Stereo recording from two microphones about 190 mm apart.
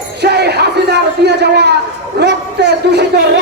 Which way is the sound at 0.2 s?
60° right (ahead or behind).